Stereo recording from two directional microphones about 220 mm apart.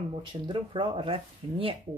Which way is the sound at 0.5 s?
20° right (ahead or behind).